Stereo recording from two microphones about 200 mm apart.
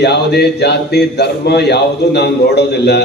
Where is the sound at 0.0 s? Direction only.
55° left (ahead or behind).